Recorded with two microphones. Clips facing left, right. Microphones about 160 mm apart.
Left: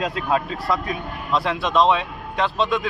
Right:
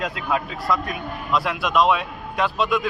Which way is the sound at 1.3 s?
30° left (ahead or behind).